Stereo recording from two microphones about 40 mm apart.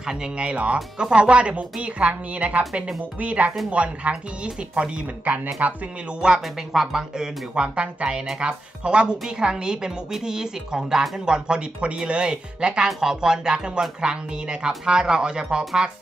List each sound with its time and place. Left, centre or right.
0.0 s a woman's voice: centre
5.6 s speech: right
6.2 s a woman's voice: right
6.7 s speech: centre
7.5 s a woman's voice: right